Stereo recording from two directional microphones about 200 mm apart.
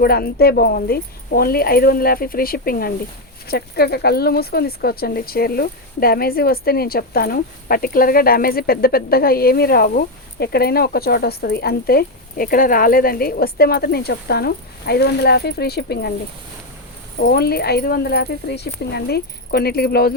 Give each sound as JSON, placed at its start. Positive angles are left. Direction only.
{"t": 0.0, "sound": "speech", "side_deg": 50}
{"t": 17.2, "sound": "speech", "side_deg": 50}